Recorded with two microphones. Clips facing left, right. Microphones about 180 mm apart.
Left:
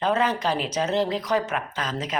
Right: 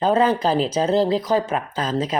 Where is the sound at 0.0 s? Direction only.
30° right (ahead or behind).